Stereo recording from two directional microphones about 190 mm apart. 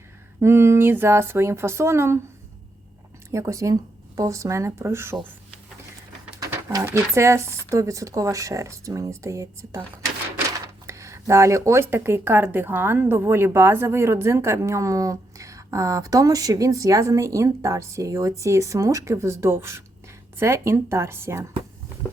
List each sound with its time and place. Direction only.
0.3 s speech: 15° right (ahead or behind)
3.3 s speech: 15° right (ahead or behind)
6.4 s speech: 15° right (ahead or behind)
10.8 s speech: 15° right (ahead or behind)